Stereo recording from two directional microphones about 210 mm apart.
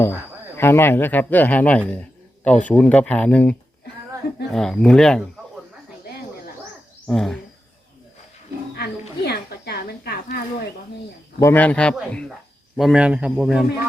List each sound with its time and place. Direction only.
0.0 s speech: 10° left (ahead or behind)
1.9 s a sound: 5° left (ahead or behind)
2.6 s speech: 5° left (ahead or behind)
4.5 s a man's voice: 5° left (ahead or behind)
7.1 s a man's voice: centre (ahead or behind)
8.7 s speech: 50° left (ahead or behind)
11.3 s a man's voice: 10° left (ahead or behind)